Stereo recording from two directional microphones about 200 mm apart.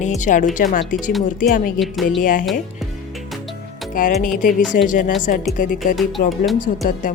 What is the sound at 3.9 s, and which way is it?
A woman's voice, 45° left (ahead or behind).